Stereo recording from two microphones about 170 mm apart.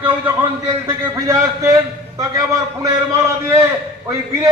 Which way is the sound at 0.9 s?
20° right (ahead or behind).